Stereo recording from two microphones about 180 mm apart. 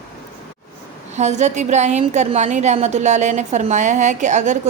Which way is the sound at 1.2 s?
40° right (ahead or behind).